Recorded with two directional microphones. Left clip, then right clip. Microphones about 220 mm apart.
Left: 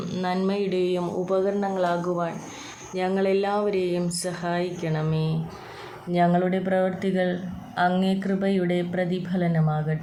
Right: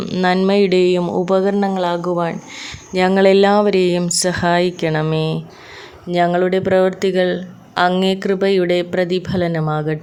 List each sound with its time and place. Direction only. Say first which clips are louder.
0.0 s speech: right 10 dB; 40° right (ahead or behind)